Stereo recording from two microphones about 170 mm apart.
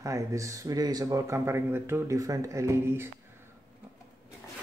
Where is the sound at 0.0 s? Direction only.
20° right (ahead or behind).